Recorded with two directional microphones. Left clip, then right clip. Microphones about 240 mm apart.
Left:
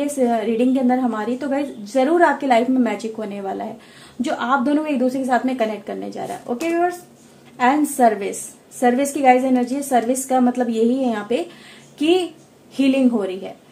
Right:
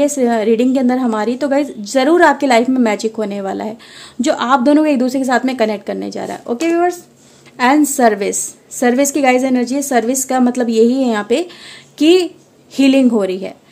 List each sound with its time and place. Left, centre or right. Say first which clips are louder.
0.0 s a woman's voice: right 6 dB; right